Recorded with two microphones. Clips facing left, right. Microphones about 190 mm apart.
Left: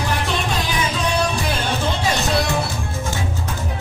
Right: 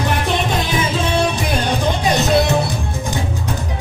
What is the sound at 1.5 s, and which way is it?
Music, 15° right (ahead or behind).